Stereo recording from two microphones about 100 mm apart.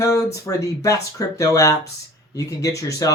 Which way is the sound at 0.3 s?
35° left (ahead or behind).